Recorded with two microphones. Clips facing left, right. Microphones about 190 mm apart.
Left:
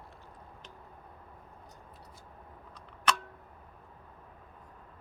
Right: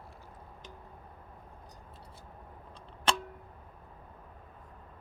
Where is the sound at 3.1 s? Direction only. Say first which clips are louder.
Even; 30° right (ahead or behind).